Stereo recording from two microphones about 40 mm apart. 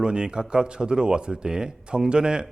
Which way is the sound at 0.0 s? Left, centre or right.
Right.